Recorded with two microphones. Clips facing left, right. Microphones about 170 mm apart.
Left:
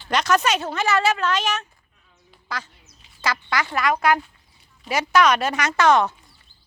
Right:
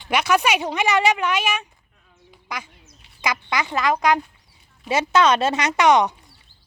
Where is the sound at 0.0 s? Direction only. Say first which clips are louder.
Right 1 dB; 10° right (ahead or behind).